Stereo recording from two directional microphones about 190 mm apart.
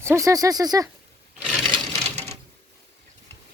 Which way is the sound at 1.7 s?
35° right (ahead or behind).